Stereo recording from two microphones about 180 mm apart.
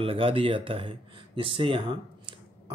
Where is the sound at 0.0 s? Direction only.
30° right (ahead or behind).